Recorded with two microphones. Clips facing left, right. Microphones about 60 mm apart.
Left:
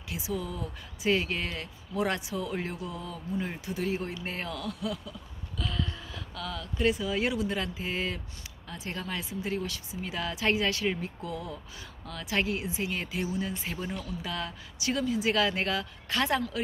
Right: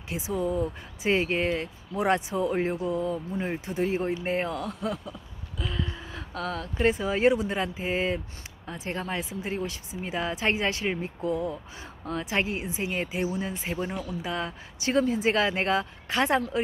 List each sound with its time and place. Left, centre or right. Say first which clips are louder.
0.1 s speech: right 6 dB; right
5.6 s gasp: right 1 dB; centre
6.1 s speech: right 6 dB; right